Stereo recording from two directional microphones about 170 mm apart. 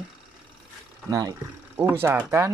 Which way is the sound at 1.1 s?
20° right (ahead or behind).